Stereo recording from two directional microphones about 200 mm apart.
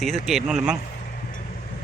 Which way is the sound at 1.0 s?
40° left (ahead or behind).